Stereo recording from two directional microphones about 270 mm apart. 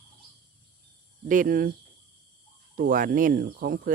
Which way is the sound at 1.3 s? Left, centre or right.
Right.